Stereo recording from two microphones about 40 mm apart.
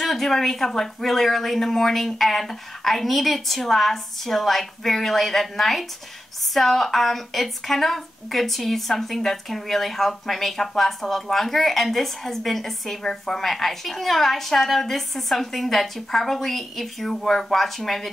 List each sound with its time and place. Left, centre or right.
0.0 s a woman's voice: centre